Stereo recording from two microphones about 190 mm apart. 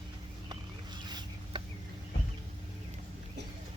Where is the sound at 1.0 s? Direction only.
25° right (ahead or behind).